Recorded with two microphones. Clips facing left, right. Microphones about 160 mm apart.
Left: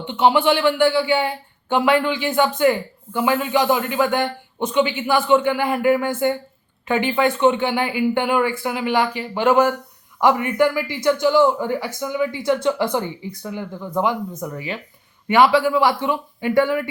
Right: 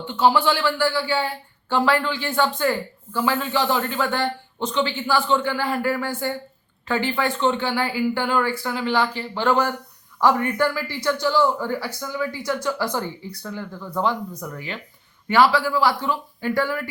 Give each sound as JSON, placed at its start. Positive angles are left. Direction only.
{"t": 0.0, "sound": "speech", "side_deg": 20}